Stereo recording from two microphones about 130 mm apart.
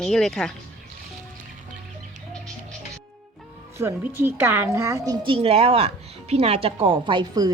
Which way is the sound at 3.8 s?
20° right (ahead or behind).